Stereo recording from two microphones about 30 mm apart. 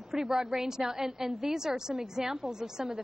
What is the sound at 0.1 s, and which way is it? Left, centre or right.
A woman's voice, centre.